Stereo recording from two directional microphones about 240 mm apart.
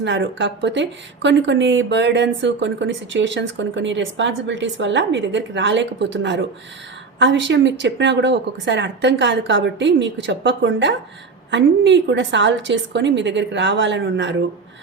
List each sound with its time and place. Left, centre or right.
0.0 s speech: right